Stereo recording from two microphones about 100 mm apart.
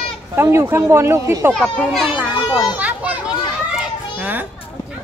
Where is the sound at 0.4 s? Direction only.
25° right (ahead or behind).